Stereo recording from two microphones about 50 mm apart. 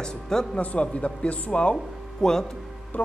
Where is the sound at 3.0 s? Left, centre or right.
Left.